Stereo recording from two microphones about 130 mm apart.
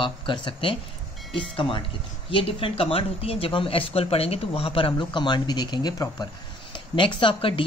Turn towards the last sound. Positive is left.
turn(degrees=45)  # may be behind; listen again after turning